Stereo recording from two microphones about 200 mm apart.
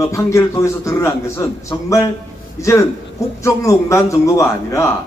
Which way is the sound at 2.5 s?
15° left (ahead or behind).